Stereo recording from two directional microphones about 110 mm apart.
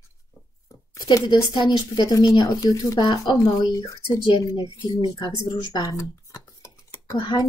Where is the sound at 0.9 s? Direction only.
40° left (ahead or behind).